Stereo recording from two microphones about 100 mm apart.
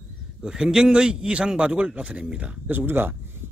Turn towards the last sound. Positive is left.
turn(degrees=-20)  # may be behind; listen again after turning